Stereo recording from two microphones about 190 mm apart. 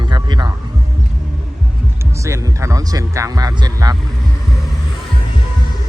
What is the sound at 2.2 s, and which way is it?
Speech, 15° right (ahead or behind).